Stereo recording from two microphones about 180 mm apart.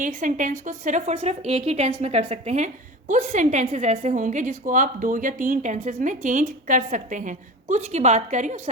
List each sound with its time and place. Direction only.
0.0 s a woman's voice: 45° right (ahead or behind)